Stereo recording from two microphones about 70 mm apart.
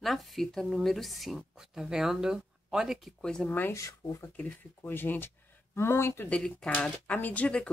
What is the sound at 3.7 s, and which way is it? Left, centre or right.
Speech, left.